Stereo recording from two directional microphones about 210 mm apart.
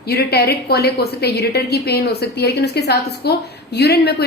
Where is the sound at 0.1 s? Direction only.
50° left (ahead or behind).